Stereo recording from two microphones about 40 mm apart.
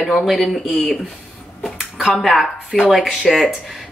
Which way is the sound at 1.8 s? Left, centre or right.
Centre.